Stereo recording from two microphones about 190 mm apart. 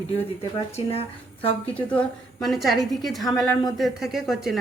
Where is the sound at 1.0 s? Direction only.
30° left (ahead or behind).